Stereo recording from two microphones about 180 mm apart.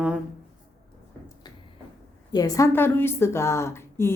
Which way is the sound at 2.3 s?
20° left (ahead or behind).